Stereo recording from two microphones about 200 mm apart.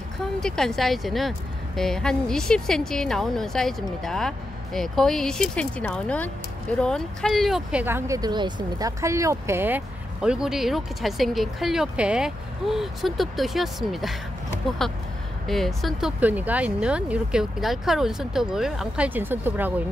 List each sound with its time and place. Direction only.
0.4 s speech: 5° left (ahead or behind)